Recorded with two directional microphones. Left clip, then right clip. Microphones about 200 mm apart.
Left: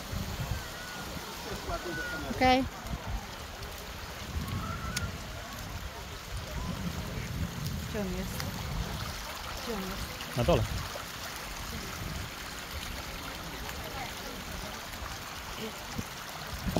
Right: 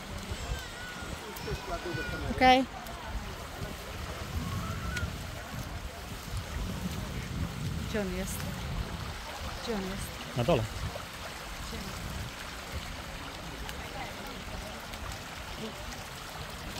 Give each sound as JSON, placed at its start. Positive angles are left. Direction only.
{"t": 2.4, "sound": "speech", "side_deg": -10}
{"t": 10.3, "sound": "speech", "side_deg": 5}